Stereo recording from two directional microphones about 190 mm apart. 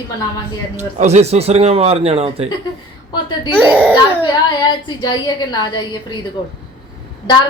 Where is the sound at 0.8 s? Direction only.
35° right (ahead or behind).